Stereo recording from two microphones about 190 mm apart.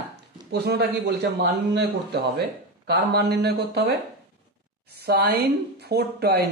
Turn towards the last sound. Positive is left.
turn(degrees=-55)  # may be behind; listen again after turning